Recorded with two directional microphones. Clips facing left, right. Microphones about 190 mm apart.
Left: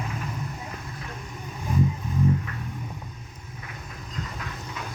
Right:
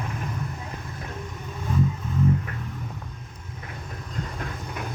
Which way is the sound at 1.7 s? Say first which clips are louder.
Even; 15° left (ahead or behind).